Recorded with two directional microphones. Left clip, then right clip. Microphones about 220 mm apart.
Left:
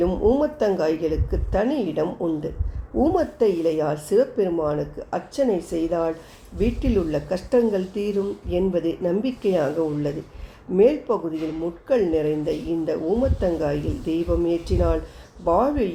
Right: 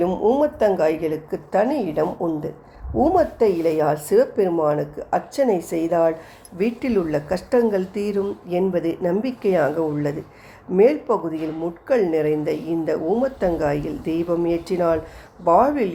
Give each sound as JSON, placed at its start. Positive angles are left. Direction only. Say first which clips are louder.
{"t": 0.0, "sound": "a woman's voice", "louder": "right 2 dB", "side_deg": -15}